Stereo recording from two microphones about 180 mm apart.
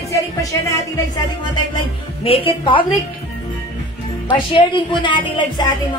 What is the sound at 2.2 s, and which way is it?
Speech, 30° left (ahead or behind).